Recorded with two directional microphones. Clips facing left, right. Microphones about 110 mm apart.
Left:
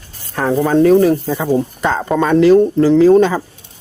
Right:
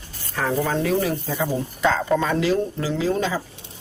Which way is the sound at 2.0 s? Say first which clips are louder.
Left 10 dB; 60° left (ahead or behind).